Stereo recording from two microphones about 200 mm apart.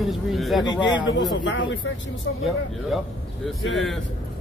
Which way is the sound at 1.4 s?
70° left (ahead or behind).